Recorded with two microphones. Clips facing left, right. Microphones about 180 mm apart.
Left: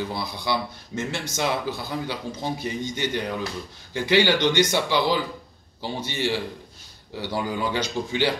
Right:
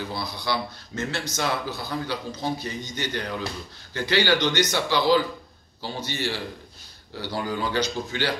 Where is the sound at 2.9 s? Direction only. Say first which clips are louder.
Even; 20° left (ahead or behind).